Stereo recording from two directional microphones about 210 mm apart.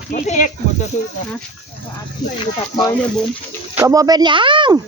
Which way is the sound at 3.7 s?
15° right (ahead or behind).